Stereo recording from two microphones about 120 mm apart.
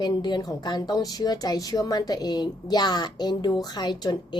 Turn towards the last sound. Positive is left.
turn(degrees=35)  # may be behind; listen again after turning